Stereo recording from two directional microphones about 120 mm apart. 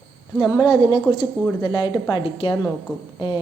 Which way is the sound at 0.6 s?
35° left (ahead or behind).